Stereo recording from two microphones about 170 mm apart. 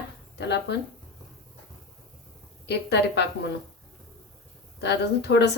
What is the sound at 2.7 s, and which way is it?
Speech, 80° left.